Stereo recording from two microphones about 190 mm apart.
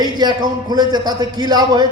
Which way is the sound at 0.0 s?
20° right (ahead or behind).